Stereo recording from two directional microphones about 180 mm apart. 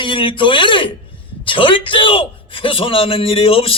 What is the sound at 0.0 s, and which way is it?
A man's voice, 30° left (ahead or behind).